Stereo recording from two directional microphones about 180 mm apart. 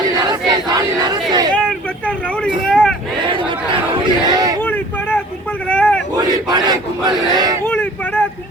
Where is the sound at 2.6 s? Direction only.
Centre (ahead or behind).